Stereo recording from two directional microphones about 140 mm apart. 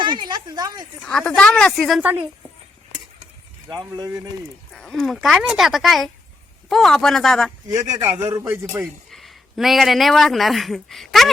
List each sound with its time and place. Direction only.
0.0 s speech: 30° right (ahead or behind)
1.0 s speech: 5° left (ahead or behind)
2.0 s a man's voice: 15° right (ahead or behind)
3.7 s speech: 30° right (ahead or behind)
4.7 s speech: 5° left (ahead or behind)
8.0 s a man's voice: 20° right (ahead or behind)
8.8 s speech: centre (ahead or behind)